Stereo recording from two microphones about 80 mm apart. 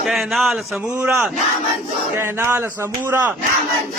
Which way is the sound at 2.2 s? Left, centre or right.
Right.